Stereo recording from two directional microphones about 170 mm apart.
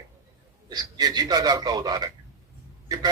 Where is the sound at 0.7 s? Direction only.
25° right (ahead or behind).